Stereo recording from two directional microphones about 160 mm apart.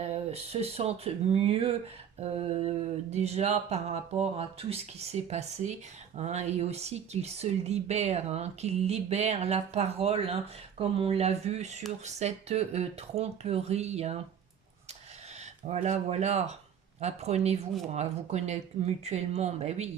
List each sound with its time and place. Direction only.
0.0 s speech: 40° right (ahead or behind)
15.6 s speech: 45° right (ahead or behind)